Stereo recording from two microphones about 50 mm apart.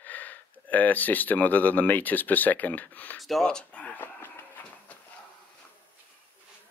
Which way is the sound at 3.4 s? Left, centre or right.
Left.